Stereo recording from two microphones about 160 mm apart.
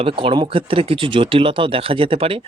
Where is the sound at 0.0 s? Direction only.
35° right (ahead or behind).